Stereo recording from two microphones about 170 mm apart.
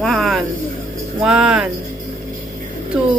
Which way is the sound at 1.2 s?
5° right (ahead or behind).